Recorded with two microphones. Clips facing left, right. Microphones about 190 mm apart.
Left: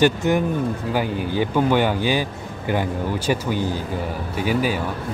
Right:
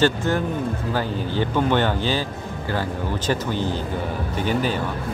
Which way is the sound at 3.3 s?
10° left (ahead or behind).